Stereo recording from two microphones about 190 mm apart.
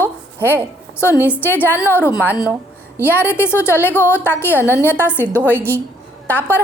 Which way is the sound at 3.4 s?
10° left (ahead or behind).